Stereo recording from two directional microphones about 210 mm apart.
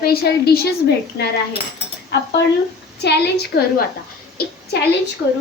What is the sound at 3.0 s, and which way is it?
Speech, 50° left (ahead or behind).